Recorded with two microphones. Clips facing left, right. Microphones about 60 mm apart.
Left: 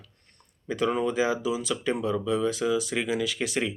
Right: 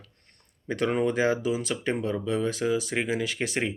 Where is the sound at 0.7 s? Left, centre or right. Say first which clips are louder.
Right 1 dB; right.